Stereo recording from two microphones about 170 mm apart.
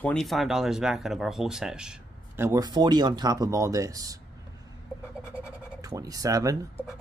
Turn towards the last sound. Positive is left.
turn(degrees=-20)  # may be behind; listen again after turning